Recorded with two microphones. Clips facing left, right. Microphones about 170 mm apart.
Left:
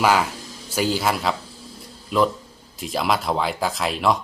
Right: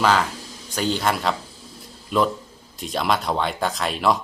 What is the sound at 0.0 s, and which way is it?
A man's voice, 10° left (ahead or behind).